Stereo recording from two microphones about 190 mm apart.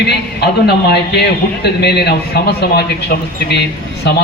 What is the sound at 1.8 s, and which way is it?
A man's voice, 60° left (ahead or behind).